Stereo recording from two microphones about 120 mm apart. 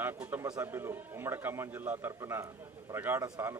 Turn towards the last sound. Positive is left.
turn(degrees=-20)  # may be behind; listen again after turning